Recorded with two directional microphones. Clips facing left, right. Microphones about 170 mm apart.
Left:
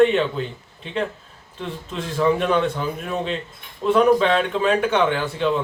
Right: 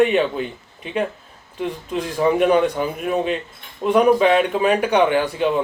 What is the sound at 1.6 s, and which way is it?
Speech, 15° right (ahead or behind).